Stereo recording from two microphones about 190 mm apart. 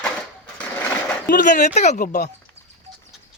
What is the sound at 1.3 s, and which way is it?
Speech, 40° left (ahead or behind).